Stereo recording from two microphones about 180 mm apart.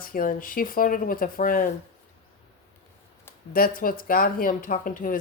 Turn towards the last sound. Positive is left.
turn(degrees=50)  # may be behind; listen again after turning